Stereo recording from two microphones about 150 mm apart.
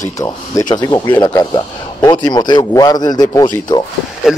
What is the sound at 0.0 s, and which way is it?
A man's voice, 20° left (ahead or behind).